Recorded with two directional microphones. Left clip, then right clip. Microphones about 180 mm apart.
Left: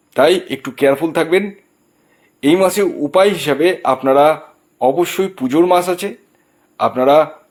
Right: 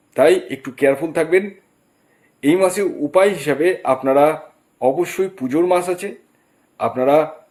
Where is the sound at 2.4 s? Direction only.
25° left (ahead or behind).